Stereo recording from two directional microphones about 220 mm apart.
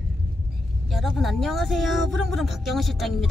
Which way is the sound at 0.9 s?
Centre (ahead or behind).